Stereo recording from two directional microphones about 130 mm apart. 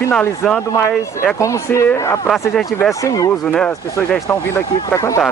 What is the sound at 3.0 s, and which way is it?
Speech, 25° left (ahead or behind).